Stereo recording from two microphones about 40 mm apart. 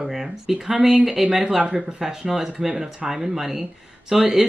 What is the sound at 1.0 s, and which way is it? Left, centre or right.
Speech, centre.